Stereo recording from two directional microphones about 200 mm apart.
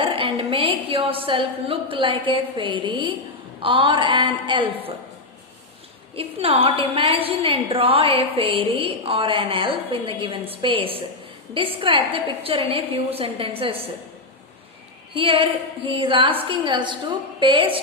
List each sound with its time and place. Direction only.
0.0 s a woman's voice: 25° right (ahead or behind)
6.1 s a woman's voice: 30° right (ahead or behind)
15.1 s a woman's voice: 25° right (ahead or behind)